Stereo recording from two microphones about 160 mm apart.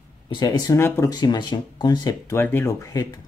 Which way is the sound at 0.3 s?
25° left (ahead or behind).